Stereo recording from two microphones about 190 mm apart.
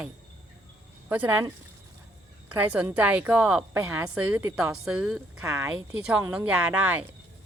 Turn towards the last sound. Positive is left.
turn(degrees=-10)  # may be behind; listen again after turning